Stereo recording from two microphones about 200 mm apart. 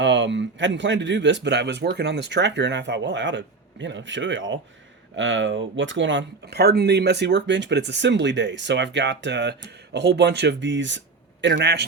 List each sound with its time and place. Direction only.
0.0 s speech: 65° right (ahead or behind)